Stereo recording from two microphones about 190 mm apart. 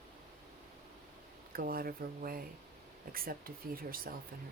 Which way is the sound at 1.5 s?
50° right (ahead or behind).